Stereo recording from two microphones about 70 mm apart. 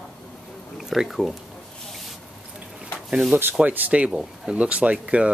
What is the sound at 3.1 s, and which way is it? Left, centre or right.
Speech, centre.